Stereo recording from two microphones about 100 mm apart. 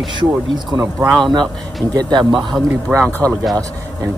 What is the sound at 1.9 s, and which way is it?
Speech, 40° right (ahead or behind).